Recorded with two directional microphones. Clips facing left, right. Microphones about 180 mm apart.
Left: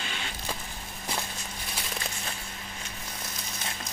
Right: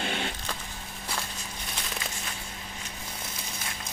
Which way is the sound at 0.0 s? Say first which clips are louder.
Right 7 dB; 55° right (ahead or behind).